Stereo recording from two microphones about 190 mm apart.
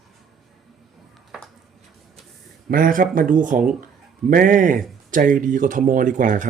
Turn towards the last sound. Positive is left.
turn(degrees=-45)  # may be behind; listen again after turning